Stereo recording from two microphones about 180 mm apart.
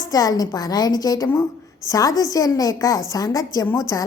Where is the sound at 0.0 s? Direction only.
20° left (ahead or behind).